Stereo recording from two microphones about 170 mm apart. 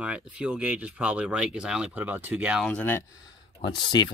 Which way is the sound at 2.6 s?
10° left (ahead or behind).